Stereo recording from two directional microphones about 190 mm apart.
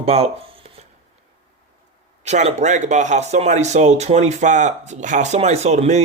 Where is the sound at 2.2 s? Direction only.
35° right (ahead or behind).